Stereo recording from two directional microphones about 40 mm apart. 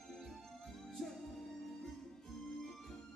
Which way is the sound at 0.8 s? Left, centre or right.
Centre.